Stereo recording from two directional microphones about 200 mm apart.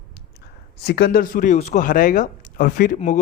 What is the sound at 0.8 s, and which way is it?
Speech, 55° left (ahead or behind).